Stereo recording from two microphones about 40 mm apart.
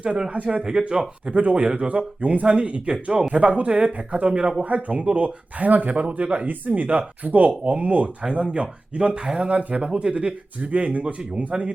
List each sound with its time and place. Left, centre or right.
0.3 s speech: right
0.6 s speech: centre
1.4 s speech: right
2.9 s speech: right